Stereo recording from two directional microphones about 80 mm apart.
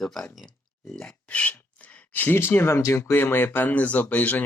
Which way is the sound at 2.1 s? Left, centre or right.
Left.